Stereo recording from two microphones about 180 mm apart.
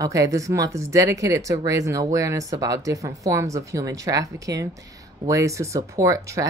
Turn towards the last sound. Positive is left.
turn(degrees=-15)  # may be behind; listen again after turning